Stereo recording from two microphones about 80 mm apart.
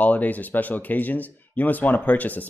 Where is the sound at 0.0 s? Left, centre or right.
Centre.